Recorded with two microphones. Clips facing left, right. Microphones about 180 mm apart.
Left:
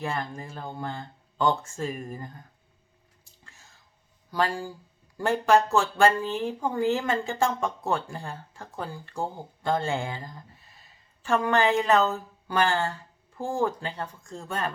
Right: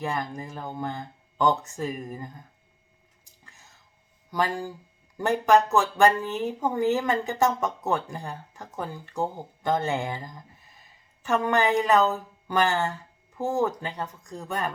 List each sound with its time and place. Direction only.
0.0 s speech: 15° right (ahead or behind)
3.4 s whispering: 20° right (ahead or behind)
4.3 s speech: 20° right (ahead or behind)